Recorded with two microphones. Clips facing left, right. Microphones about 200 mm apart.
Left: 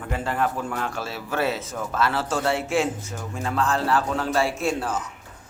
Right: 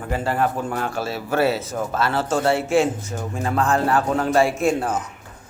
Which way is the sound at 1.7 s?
30° right (ahead or behind).